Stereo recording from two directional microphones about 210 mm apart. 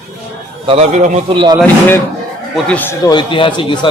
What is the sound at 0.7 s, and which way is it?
Speech, 30° right (ahead or behind).